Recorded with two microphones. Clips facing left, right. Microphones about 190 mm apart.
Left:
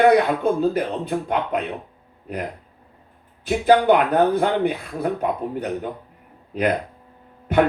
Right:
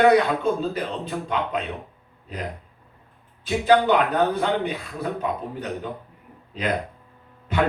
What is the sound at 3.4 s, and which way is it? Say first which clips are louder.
A man's voice: left 3 dB; 55° left (ahead or behind).